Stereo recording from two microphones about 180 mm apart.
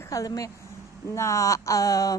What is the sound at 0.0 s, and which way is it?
A woman's voice, 20° left (ahead or behind).